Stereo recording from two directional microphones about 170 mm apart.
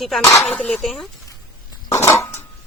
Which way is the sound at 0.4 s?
5° left (ahead or behind).